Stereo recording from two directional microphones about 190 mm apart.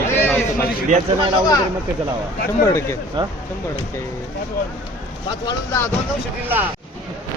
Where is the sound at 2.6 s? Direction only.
15° left (ahead or behind).